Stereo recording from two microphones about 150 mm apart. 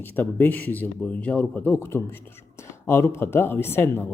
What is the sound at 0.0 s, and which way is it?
A man's voice, 10° left (ahead or behind).